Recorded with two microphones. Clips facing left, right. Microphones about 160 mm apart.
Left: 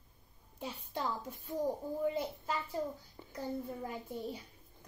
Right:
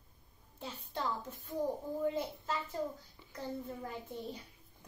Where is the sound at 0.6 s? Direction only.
10° left (ahead or behind).